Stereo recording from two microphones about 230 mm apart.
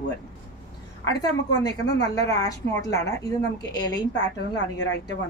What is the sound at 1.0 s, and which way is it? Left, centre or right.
A woman's voice, centre.